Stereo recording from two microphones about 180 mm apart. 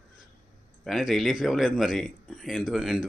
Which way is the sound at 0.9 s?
Centre (ahead or behind).